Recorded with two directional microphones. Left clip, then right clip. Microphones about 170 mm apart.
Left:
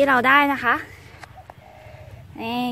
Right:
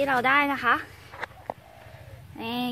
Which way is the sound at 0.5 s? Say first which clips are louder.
Left 3 dB; 10° left (ahead or behind).